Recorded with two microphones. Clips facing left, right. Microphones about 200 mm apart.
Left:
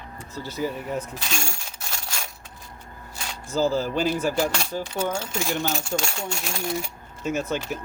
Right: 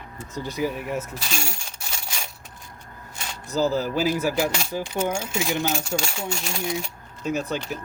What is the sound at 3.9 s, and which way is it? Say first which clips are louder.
Speech: right 1 dB; 5° right (ahead or behind).